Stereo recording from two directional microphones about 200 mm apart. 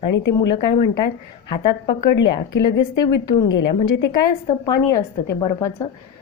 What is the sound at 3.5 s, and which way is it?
Speech, 65° left (ahead or behind).